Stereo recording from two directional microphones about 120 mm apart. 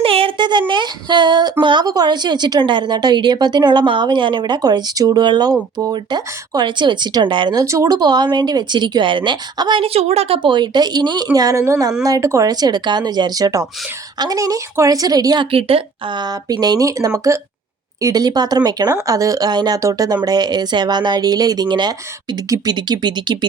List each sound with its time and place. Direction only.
0.0 s a sound: 50° right (ahead or behind)
0.7 s female singing: 40° right (ahead or behind)
1.6 s a woman's voice: 40° right (ahead or behind)
7.6 s a woman's voice: 25° right (ahead or behind)
15.5 s a woman's voice: 50° right (ahead or behind)